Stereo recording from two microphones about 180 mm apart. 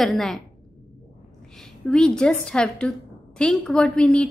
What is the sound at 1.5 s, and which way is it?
A woman's voice, 5° left (ahead or behind).